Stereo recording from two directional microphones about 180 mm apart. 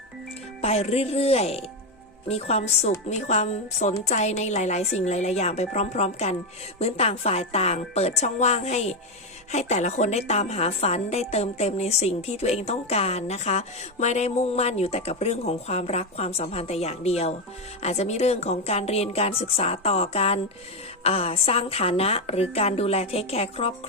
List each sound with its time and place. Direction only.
0.6 s a woman's voice: 35° left (ahead or behind)